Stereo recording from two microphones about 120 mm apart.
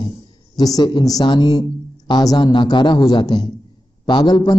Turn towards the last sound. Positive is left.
turn(degrees=35)  # may be behind; listen again after turning